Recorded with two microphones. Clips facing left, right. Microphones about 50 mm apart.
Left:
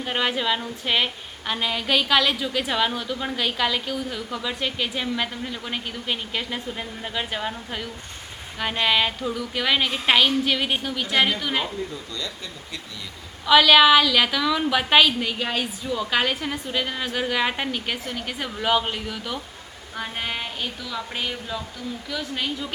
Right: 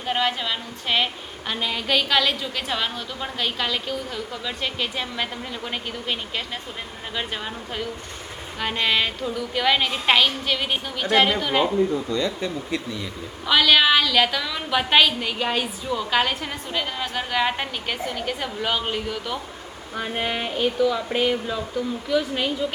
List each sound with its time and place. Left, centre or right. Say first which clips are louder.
0.0 s a woman's voice: even; centre
12.1 s speech: right 9 dB; right
13.5 s a woman's voice: left 3 dB; centre